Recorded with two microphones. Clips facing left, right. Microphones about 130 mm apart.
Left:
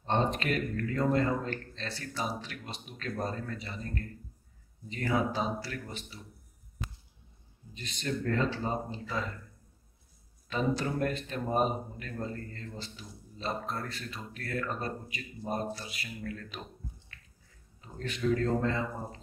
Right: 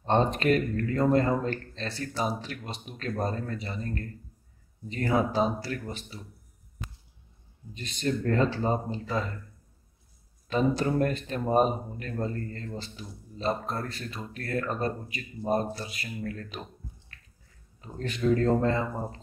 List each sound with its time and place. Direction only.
0.0 s a man's voice: 40° right (ahead or behind)
7.7 s a man's voice: 40° right (ahead or behind)
10.5 s a man's voice: 40° right (ahead or behind)
17.7 s a man's voice: 40° right (ahead or behind)